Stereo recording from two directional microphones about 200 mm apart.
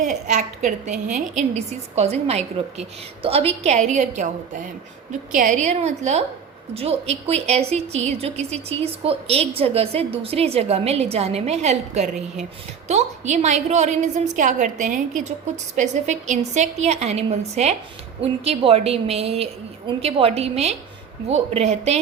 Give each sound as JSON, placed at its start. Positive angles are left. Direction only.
{"t": 0.0, "sound": "a woman's voice", "side_deg": -40}